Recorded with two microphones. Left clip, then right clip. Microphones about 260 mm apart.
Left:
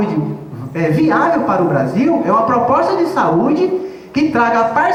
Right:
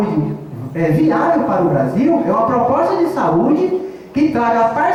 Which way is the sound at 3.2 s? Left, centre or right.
Left.